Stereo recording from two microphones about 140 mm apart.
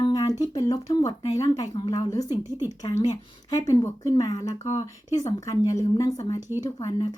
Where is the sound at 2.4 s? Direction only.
20° right (ahead or behind).